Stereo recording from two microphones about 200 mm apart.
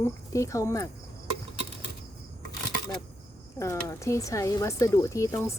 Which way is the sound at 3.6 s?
15° left (ahead or behind).